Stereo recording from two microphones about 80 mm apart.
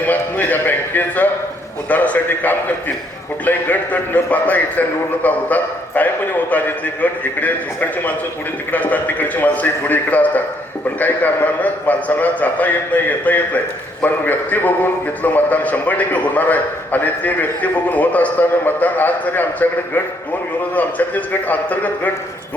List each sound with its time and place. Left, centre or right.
0.0 s a man's voice: left
20.7 s a man's voice: centre